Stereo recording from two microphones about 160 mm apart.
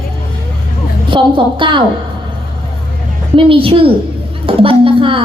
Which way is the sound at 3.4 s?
35° right (ahead or behind).